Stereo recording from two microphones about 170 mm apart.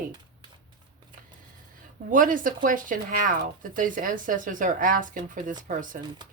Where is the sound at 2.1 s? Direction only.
50° right (ahead or behind).